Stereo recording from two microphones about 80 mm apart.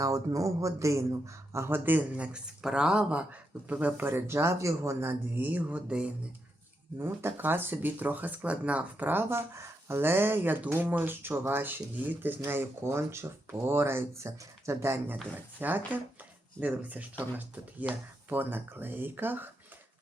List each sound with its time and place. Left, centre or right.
0.0 s speech: right
1.5 s speech: right
5.4 s speech: centre
7.0 s speech: right